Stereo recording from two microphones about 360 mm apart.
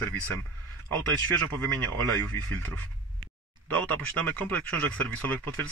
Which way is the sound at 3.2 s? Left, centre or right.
Right.